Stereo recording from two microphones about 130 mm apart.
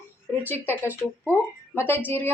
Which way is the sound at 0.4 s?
15° left (ahead or behind).